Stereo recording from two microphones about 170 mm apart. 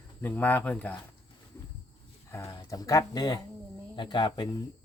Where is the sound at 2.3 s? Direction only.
15° left (ahead or behind).